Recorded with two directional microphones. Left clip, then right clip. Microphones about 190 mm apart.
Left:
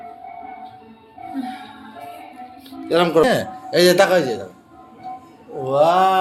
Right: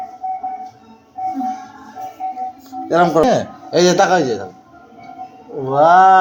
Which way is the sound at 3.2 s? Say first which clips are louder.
Right 2 dB; 15° right (ahead or behind).